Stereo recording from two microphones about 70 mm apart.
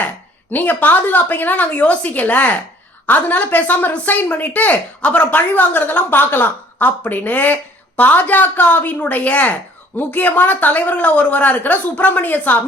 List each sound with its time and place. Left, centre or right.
0.5 s speech: left